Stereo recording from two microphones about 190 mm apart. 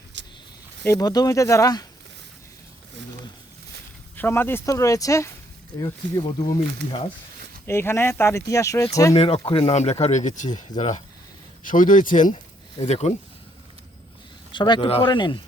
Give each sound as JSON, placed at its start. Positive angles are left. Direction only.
{"t": 0.1, "sound": "a sound", "side_deg": -70}
{"t": 0.9, "sound": "speech", "side_deg": 20}
{"t": 4.2, "sound": "speech", "side_deg": 10}
{"t": 7.7, "sound": "speech", "side_deg": 15}
{"t": 9.1, "sound": "speech", "side_deg": 30}
{"t": 10.7, "sound": "speech", "side_deg": 20}
{"t": 11.6, "sound": "speech", "side_deg": 45}
{"t": 14.5, "sound": "speech", "side_deg": 25}